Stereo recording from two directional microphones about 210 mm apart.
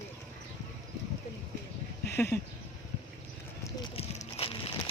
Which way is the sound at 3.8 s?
25° left (ahead or behind).